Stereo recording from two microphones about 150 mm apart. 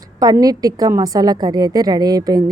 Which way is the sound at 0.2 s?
25° right (ahead or behind).